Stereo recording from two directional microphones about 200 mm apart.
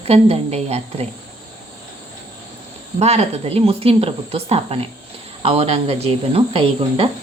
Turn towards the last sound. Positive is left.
turn(degrees=-30)  # may be behind; listen again after turning